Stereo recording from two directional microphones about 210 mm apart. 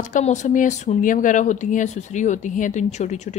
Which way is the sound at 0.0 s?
35° left (ahead or behind).